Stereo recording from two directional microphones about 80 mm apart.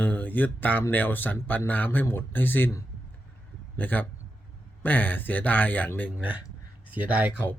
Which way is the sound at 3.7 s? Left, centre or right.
Left.